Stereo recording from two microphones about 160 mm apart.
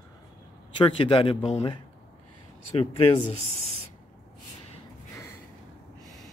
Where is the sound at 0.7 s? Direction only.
30° left (ahead or behind).